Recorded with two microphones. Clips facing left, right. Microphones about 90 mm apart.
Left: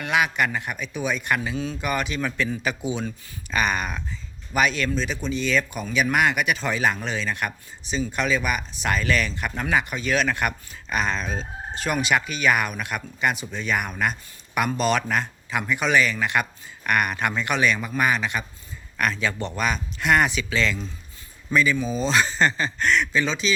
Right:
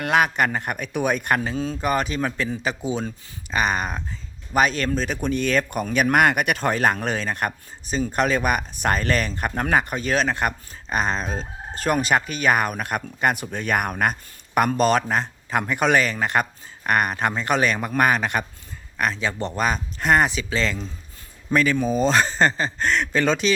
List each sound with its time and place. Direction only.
0.0 s a man's voice: 45° right (ahead or behind)
15.5 s a man's voice: 45° right (ahead or behind)
18.9 s a man's voice: 30° right (ahead or behind)
21.5 s speech: 50° right (ahead or behind)
23.2 s speech: 55° right (ahead or behind)